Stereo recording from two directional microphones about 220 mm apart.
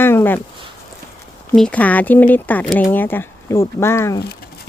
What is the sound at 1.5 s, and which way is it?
Speech, 5° left (ahead or behind).